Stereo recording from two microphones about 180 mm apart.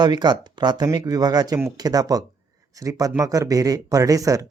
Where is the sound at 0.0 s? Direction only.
25° right (ahead or behind).